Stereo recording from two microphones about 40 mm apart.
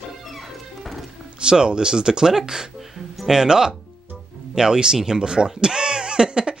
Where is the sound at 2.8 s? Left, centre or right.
Centre.